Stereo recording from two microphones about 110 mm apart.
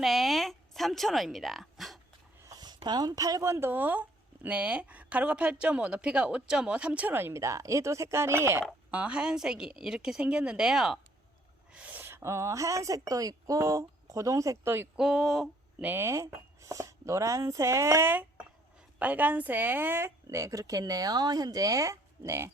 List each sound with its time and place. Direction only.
0.0 s speech: centre (ahead or behind)
2.4 s a woman's voice: 35° right (ahead or behind)
8.9 s a woman's voice: 10° right (ahead or behind)
14.9 s speech: 5° right (ahead or behind)
15.8 s a woman's voice: 20° right (ahead or behind)